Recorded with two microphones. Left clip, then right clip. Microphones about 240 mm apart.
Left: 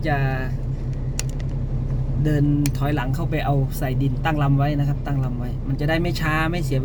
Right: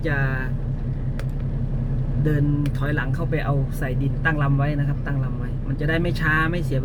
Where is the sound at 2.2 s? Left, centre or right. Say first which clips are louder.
Left 3 dB; centre.